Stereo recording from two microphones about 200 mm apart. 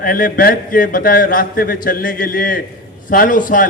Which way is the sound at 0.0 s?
45° left (ahead or behind).